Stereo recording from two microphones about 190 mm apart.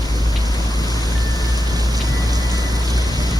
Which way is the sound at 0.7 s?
20° left (ahead or behind).